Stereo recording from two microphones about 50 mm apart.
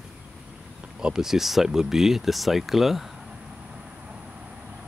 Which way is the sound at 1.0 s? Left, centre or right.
Centre.